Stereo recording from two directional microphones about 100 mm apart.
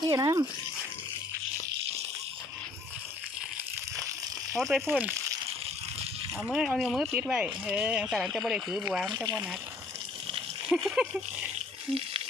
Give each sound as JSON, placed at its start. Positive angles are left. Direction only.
{"t": 0.1, "sound": "speech", "side_deg": -40}
{"t": 4.5, "sound": "speech", "side_deg": 0}
{"t": 6.4, "sound": "speech", "side_deg": -10}
{"t": 10.7, "sound": "speech", "side_deg": 0}